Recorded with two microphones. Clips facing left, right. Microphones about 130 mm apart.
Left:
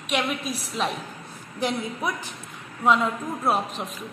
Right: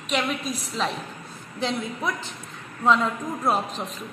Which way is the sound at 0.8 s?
5° left (ahead or behind).